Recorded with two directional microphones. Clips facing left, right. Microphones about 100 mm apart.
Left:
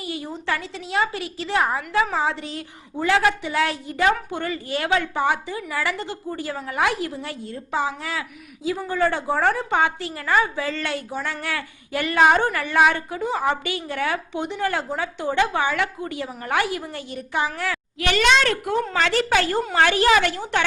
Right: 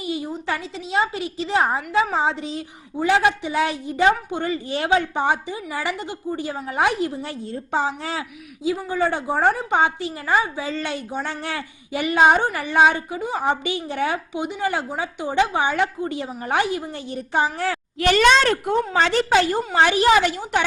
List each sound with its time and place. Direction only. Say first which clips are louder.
0.0 s a sound: right 4 dB; 20° right (ahead or behind)
0.4 s a woman's voice: even; 20° right (ahead or behind)
8.8 s a woman's voice: left 3 dB; 15° right (ahead or behind)